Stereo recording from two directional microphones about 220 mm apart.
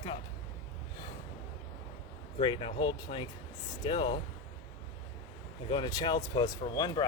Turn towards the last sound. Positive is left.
turn(degrees=20)  # may be behind; listen again after turning